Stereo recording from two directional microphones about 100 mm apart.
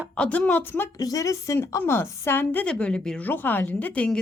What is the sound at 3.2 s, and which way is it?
Speech, 20° left (ahead or behind).